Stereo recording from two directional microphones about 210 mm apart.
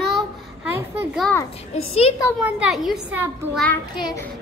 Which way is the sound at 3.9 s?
20° left (ahead or behind).